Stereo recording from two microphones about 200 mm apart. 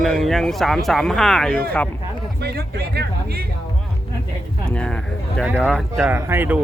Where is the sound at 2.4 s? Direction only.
55° right (ahead or behind).